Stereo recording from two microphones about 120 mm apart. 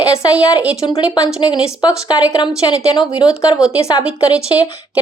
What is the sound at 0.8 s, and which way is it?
Speech, 35° left (ahead or behind).